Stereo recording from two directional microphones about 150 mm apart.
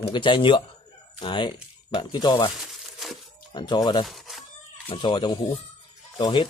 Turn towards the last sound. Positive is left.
turn(degrees=35)  # may be behind; listen again after turning